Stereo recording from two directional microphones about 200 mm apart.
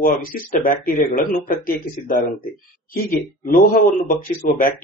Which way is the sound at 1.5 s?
45° left (ahead or behind).